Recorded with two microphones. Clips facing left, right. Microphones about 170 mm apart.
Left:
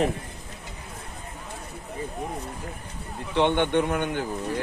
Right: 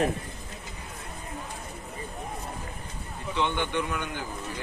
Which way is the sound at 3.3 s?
65° left (ahead or behind).